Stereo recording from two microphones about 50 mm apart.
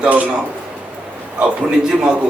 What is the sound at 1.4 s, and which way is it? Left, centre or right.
Speech, centre.